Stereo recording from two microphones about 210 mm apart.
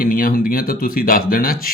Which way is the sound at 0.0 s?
40° left (ahead or behind).